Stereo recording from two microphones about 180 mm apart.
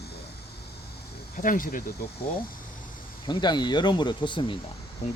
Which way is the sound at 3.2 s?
25° left (ahead or behind).